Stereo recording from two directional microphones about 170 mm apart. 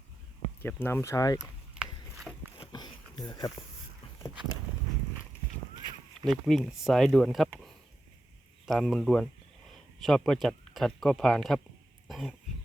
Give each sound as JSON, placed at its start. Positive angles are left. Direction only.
{"t": 0.6, "sound": "speech", "side_deg": 10}
{"t": 2.6, "sound": "sniff", "side_deg": 25}
{"t": 6.2, "sound": "speech", "side_deg": 0}
{"t": 8.6, "sound": "speech", "side_deg": 0}
{"t": 12.0, "sound": "throat clearing", "side_deg": 0}